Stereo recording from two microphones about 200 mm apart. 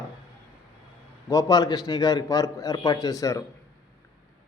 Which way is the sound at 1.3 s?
15° left (ahead or behind).